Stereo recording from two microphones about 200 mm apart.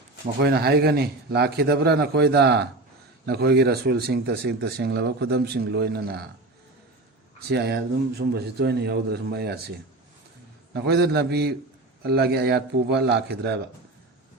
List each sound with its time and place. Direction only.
0.4 s a man's voice: 55° right (ahead or behind)
7.5 s a man's voice: 55° right (ahead or behind)